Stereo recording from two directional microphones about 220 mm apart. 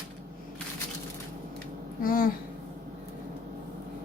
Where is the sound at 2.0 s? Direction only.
40° left (ahead or behind).